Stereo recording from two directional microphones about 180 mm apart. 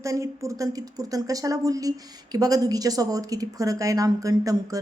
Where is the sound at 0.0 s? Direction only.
15° right (ahead or behind).